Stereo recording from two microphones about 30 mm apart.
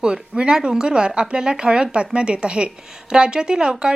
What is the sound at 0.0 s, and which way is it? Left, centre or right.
A woman's voice, right.